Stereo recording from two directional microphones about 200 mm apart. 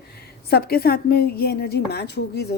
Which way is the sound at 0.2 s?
50° left (ahead or behind).